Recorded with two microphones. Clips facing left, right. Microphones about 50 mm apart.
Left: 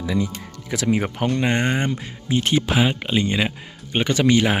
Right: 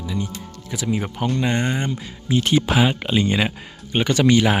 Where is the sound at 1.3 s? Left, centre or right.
Left.